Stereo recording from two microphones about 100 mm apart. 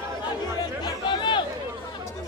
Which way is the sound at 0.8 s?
50° left (ahead or behind).